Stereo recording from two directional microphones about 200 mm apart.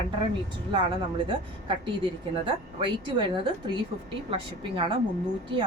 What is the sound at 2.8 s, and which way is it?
Speech, 25° right (ahead or behind).